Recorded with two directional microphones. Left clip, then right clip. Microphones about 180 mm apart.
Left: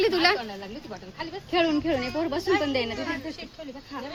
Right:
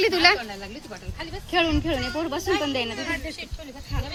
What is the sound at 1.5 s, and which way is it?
A woman's voice, centre (ahead or behind).